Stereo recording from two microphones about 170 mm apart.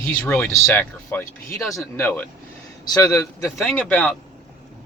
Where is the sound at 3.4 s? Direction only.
Centre (ahead or behind).